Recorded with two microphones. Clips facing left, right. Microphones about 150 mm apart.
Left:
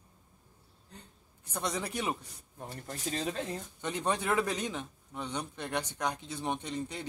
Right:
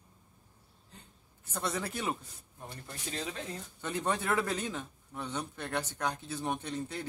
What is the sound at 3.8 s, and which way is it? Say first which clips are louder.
A man's voice: even; 15° left (ahead or behind).